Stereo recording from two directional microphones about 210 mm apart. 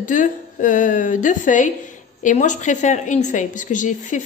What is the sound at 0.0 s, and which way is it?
A woman's voice, 35° left (ahead or behind).